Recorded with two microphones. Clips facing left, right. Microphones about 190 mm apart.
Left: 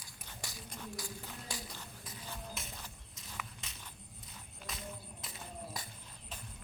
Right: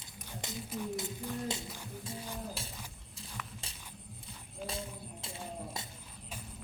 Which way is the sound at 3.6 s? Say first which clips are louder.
Right 2 dB; 30° right (ahead or behind).